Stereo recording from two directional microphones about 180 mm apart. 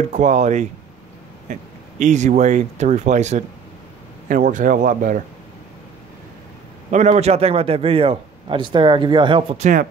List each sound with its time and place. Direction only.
0.1 s a man's voice: 40° right (ahead or behind)
6.9 s a man's voice: 40° right (ahead or behind)